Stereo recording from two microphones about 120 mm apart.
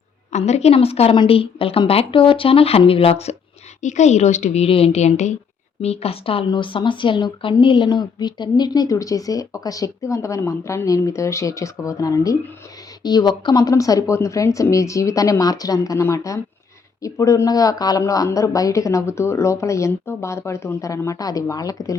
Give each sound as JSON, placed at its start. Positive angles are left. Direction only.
{"t": 0.3, "sound": "speech", "side_deg": 70}
{"t": 1.1, "sound": "speech", "side_deg": 45}
{"t": 3.8, "sound": "a woman's voice", "side_deg": 85}
{"t": 5.8, "sound": "speech", "side_deg": 60}